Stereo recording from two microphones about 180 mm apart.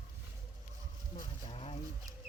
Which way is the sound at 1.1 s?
30° left (ahead or behind).